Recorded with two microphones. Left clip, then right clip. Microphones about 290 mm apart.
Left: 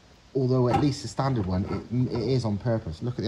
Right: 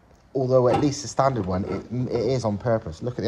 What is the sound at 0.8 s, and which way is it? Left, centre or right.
Speech, centre.